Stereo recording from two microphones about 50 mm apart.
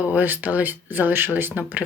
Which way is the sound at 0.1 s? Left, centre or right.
Right.